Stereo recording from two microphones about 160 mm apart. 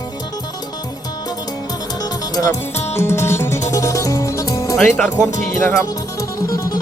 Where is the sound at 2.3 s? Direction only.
20° left (ahead or behind).